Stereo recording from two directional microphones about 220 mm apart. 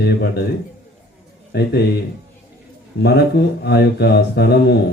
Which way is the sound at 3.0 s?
45° left (ahead or behind).